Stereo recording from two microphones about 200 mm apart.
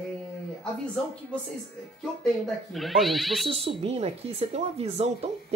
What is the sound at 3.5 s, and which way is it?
Speech, 30° right (ahead or behind).